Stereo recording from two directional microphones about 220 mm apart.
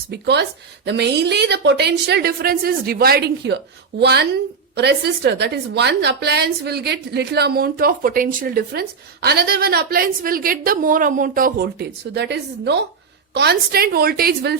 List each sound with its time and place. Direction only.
0.1 s a woman's voice: 50° right (ahead or behind)